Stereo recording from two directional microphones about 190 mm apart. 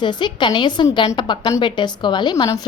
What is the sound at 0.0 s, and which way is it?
A woman's voice, 25° left (ahead or behind).